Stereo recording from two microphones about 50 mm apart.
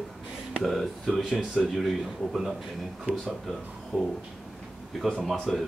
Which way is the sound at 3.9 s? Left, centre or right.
Left.